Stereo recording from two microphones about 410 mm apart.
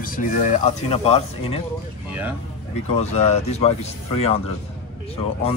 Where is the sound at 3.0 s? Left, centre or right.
Centre.